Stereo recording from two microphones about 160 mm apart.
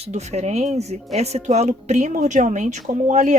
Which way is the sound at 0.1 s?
45° right (ahead or behind).